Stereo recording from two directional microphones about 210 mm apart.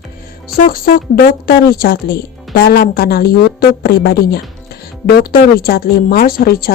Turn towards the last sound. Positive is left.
turn(degrees=45)  # may be behind; listen again after turning